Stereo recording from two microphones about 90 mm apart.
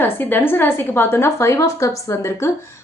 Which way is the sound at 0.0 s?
25° left (ahead or behind).